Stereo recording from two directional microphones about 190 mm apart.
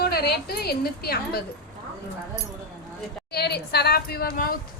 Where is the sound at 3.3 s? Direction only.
60° left (ahead or behind).